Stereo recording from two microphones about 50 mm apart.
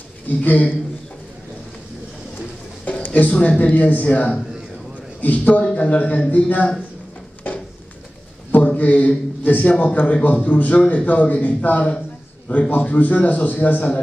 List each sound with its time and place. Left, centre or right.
0.4 s a man's voice: left
2.8 s a man's voice: left
8.6 s a man's voice: left